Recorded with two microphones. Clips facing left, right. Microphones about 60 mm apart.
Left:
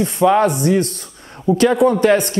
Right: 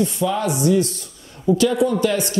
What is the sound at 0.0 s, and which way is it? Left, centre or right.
Speech, left.